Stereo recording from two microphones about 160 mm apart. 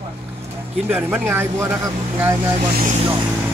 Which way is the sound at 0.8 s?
10° right (ahead or behind).